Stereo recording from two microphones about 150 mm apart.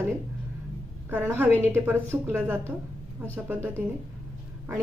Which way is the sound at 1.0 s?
15° right (ahead or behind).